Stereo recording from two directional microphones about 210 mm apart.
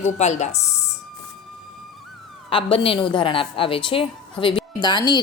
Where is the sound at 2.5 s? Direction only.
25° left (ahead or behind).